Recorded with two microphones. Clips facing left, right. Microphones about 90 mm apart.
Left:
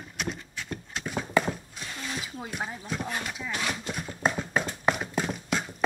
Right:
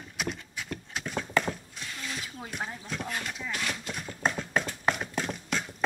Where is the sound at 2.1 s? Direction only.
10° left (ahead or behind).